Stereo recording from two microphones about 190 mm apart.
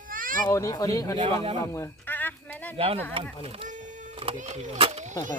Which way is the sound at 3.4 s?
35° right (ahead or behind).